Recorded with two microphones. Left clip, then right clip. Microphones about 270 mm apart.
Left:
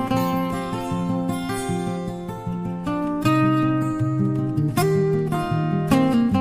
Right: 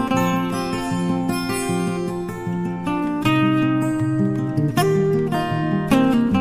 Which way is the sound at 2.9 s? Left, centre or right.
Left.